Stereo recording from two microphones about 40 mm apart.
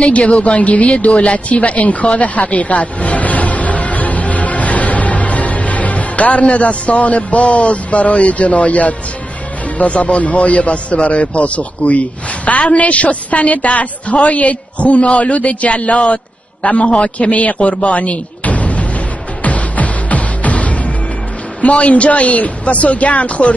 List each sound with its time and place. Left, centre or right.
0.0 s a woman's voice: left
17.7 s a sound: left
19.4 s music: left
21.6 s a man's voice: left